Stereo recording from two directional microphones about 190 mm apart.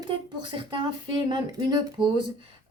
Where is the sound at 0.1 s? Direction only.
25° right (ahead or behind).